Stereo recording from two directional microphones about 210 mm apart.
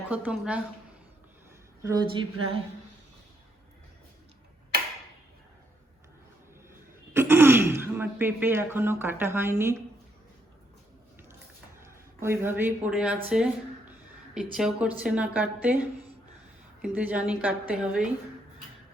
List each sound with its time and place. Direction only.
0.1 s speech: 5° right (ahead or behind)
1.8 s speech: 15° right (ahead or behind)
7.1 s speech: 10° right (ahead or behind)
12.2 s a woman's voice: 10° right (ahead or behind)